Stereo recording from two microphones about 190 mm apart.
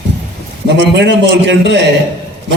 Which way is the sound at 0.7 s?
65° right (ahead or behind).